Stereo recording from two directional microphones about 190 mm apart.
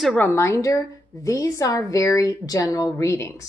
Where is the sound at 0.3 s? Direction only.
15° left (ahead or behind).